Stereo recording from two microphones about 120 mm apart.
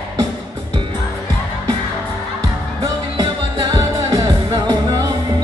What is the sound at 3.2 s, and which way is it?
Music, 35° right (ahead or behind).